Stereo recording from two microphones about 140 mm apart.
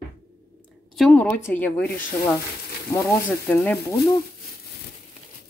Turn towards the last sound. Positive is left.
turn(degrees=15)  # may be behind; listen again after turning